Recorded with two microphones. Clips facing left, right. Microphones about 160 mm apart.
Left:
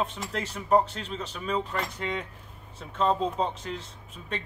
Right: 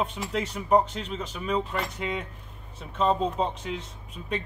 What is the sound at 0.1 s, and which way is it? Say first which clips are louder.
Speech: right 3 dB; 5° right (ahead or behind).